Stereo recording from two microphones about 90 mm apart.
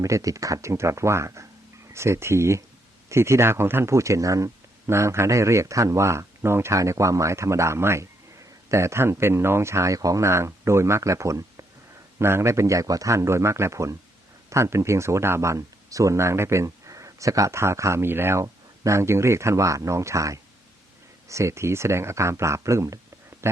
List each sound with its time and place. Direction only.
0.0 s speech: 40° right (ahead or behind)
18.4 s speech: 40° right (ahead or behind)
23.3 s a sound: 30° right (ahead or behind)